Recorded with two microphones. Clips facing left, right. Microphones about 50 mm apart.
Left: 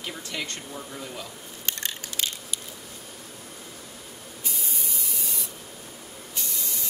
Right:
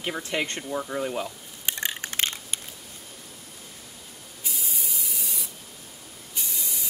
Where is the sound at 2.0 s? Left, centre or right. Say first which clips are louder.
Right 3 dB; right.